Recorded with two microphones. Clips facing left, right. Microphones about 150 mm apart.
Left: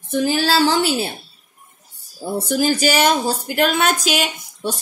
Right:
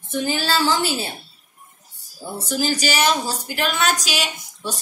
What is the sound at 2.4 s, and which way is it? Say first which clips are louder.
A woman's voice: left 5 dB; 55° left (ahead or behind).